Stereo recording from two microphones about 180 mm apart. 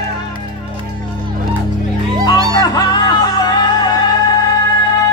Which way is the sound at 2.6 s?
20° left (ahead or behind).